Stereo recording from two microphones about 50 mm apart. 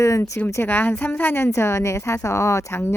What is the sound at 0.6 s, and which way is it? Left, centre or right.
Speech, left.